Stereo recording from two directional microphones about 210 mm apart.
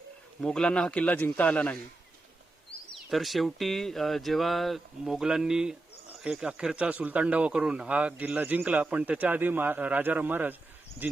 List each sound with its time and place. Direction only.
0.4 s speech: 5° left (ahead or behind)
3.1 s speech: centre (ahead or behind)